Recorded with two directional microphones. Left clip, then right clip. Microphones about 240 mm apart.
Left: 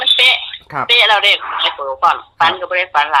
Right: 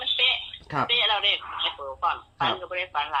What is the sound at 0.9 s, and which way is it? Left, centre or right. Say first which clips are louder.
Speech: left 13 dB; left.